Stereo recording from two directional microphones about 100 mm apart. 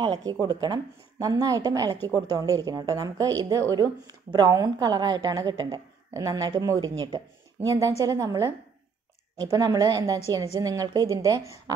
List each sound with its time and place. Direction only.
0.0 s speech: 45° right (ahead or behind)